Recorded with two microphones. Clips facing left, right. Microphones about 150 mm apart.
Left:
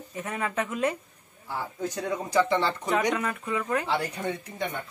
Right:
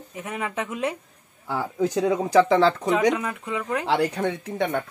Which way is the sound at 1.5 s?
90° right.